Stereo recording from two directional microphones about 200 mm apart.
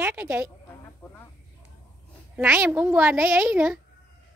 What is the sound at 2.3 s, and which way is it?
A child's voice, 10° right (ahead or behind).